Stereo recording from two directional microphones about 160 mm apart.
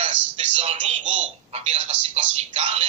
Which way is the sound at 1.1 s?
40° right (ahead or behind).